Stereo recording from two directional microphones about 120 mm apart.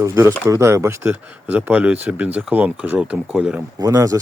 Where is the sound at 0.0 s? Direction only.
25° right (ahead or behind).